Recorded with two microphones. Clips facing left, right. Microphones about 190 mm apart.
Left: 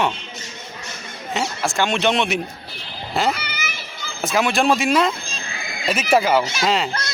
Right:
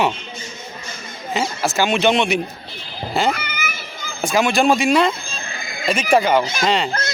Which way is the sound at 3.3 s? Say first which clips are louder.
Right 3 dB; 50° right (ahead or behind).